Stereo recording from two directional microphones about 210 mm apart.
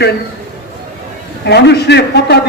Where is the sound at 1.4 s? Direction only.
55° left (ahead or behind).